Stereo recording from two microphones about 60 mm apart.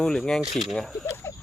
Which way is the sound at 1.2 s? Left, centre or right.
Left.